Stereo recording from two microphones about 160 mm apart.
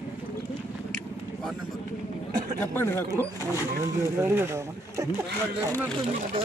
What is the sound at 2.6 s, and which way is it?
Speech, 15° left (ahead or behind).